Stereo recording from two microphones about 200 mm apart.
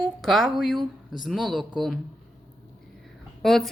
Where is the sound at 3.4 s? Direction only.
Centre (ahead or behind).